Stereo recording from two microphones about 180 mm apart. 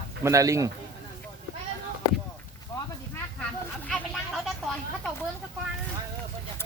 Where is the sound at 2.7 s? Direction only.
20° left (ahead or behind).